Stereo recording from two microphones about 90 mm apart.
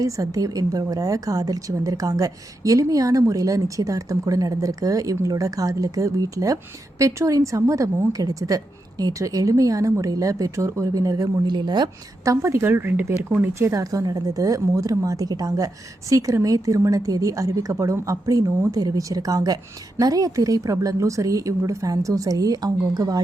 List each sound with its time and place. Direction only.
0.0 s a woman's voice: 40° right (ahead or behind); by 11.9 s 55° right (ahead or behind)
12.2 s speech: 35° right (ahead or behind)
13.5 s a woman's voice: 30° right (ahead or behind)